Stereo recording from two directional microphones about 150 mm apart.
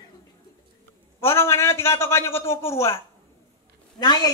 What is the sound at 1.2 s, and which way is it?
A man's voice, 15° left (ahead or behind).